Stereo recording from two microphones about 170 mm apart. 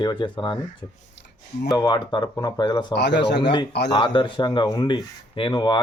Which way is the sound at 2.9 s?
85° left.